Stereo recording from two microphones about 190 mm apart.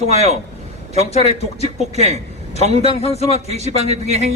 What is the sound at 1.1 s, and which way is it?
Speech, 35° left (ahead or behind).